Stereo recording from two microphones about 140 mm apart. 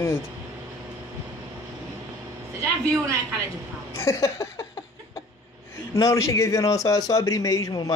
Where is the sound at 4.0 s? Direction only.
20° left (ahead or behind).